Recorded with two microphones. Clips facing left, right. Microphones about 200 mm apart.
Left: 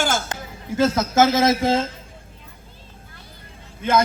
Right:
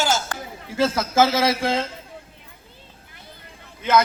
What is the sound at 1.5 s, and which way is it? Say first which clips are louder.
Speech: left 3 dB; 45° left (ahead or behind).